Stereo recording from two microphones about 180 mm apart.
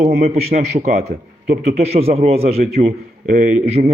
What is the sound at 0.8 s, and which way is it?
A man's voice, 40° right (ahead or behind).